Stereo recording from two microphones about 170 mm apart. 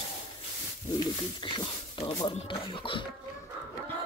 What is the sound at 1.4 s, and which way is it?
Speech, 25° left (ahead or behind).